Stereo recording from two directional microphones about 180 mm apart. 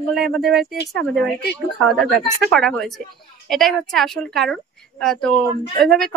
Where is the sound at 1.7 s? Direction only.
Centre (ahead or behind).